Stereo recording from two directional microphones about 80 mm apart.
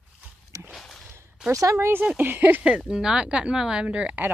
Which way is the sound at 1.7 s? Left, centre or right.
Right.